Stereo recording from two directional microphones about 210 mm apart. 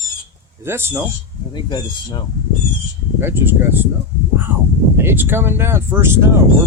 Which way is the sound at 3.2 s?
10° right (ahead or behind).